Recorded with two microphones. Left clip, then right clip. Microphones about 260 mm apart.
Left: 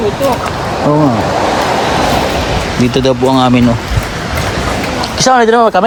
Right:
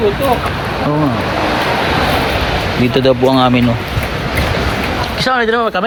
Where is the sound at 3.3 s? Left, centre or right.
Centre.